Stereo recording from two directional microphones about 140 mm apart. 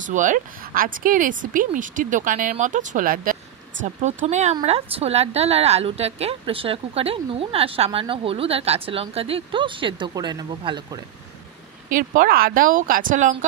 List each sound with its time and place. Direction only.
0.0 s speech: 65° right (ahead or behind)
2.5 s speech: 65° right (ahead or behind)
3.8 s a woman's voice: 55° right (ahead or behind); by 11.0 s 30° right (ahead or behind)
11.9 s speech: 80° right